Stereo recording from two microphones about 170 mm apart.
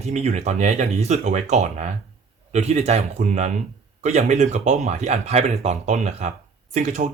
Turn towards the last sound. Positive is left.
turn(degrees=-45)  # may be behind; listen again after turning